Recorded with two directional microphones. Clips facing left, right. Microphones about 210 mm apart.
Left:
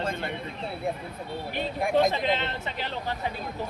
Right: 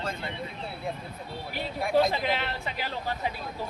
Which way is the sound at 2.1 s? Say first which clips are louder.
Left 2 dB; 5° right (ahead or behind).